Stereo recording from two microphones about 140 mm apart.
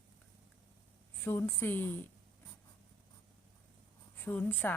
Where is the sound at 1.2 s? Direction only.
15° left (ahead or behind).